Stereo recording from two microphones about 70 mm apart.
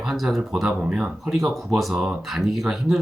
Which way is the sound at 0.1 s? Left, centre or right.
Centre.